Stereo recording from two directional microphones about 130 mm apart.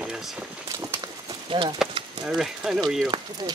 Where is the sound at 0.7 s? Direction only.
25° right (ahead or behind).